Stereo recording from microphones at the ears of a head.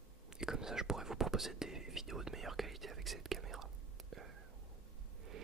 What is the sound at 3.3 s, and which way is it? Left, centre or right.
Whispering, right.